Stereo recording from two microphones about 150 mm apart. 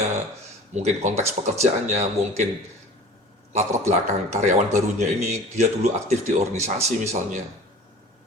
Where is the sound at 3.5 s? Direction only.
50° right (ahead or behind).